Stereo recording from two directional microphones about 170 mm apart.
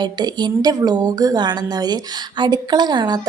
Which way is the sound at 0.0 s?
25° right (ahead or behind).